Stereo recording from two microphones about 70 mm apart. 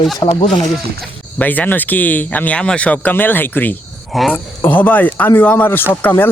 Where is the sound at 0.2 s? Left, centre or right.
Left.